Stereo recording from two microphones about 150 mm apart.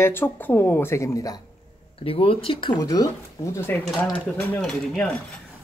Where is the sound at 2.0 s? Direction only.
40° left (ahead or behind); by 3.8 s 15° left (ahead or behind).